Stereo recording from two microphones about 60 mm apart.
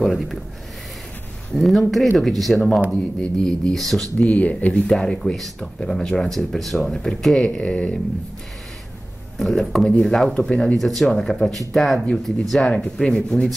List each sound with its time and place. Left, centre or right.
0.0 s speech: centre
1.5 s speech: centre
2.9 s speech: centre
3.4 s speech: centre
4.2 s speech: left
4.8 s speech: centre
9.4 s speech: centre